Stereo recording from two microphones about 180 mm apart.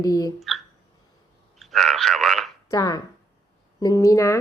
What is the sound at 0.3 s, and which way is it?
Speech, centre (ahead or behind).